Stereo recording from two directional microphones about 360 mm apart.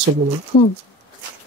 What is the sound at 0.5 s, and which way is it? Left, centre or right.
Speech, left.